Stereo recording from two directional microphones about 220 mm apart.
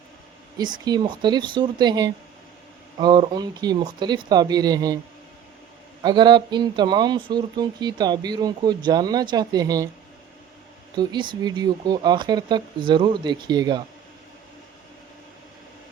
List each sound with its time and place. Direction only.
0.6 s speech: 20° right (ahead or behind)
6.0 s speech: 20° right (ahead or behind)
10.9 s speech: 20° right (ahead or behind)